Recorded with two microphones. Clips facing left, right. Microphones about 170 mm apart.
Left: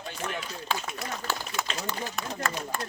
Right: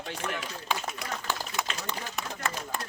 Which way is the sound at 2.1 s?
15° right (ahead or behind).